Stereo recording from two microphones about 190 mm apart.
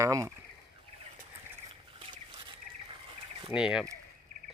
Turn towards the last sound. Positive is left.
turn(degrees=-5)  # may be behind; listen again after turning